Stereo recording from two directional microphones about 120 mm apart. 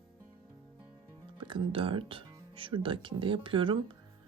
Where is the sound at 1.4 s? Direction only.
45° right (ahead or behind).